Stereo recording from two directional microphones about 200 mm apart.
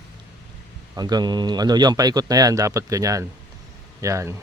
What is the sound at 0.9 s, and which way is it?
A man's voice, 20° right (ahead or behind).